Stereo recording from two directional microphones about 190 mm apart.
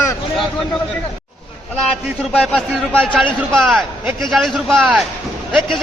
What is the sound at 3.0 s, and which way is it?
A man's voice, 10° right (ahead or behind).